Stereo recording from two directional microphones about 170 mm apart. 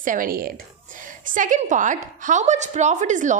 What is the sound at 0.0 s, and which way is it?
Speech, 55° right (ahead or behind).